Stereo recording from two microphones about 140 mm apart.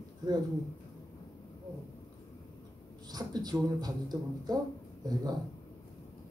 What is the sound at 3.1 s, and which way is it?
Speech, 30° right (ahead or behind).